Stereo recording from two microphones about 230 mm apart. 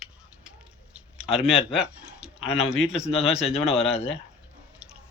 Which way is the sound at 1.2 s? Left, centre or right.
Centre.